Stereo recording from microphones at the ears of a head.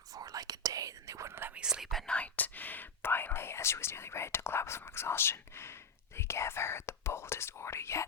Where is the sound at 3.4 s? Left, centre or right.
Left.